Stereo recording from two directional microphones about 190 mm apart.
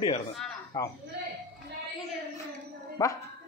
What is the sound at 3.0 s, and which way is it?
Speech, 15° left (ahead or behind).